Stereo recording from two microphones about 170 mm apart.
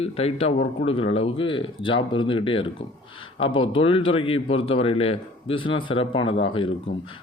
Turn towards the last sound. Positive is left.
turn(degrees=30)  # may be behind; listen again after turning